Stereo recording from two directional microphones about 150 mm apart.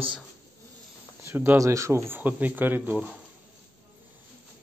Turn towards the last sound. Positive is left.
turn(degrees=-10)  # may be behind; listen again after turning